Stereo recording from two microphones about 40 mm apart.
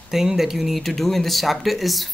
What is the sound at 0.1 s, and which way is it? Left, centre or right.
Speech, centre.